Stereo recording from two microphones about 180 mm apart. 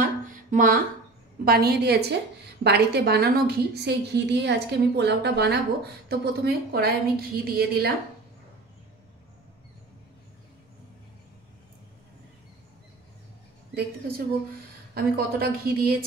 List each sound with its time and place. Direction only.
0.0 s music: 45° right (ahead or behind)
1.4 s a woman's voice: 60° right (ahead or behind)
15.0 s a woman's voice: 60° right (ahead or behind)